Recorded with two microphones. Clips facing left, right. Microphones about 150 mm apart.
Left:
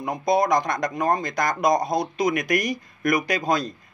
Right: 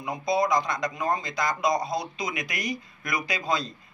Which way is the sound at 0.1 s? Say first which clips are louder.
Left 4 dB; 45° left (ahead or behind).